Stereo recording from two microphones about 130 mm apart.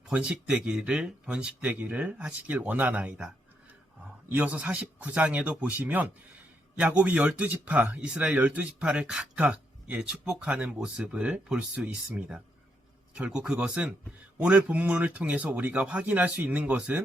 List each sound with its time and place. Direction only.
0.1 s speech: 10° right (ahead or behind)